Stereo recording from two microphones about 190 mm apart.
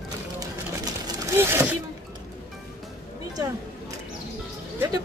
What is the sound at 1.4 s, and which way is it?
Speech, 10° right (ahead or behind).